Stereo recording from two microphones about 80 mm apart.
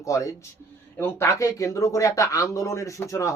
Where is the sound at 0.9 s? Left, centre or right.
Left.